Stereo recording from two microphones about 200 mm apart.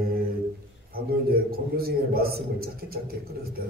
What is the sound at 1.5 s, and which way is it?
A man's voice, 50° right (ahead or behind).